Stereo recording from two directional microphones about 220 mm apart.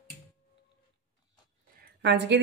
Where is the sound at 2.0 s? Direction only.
50° right (ahead or behind).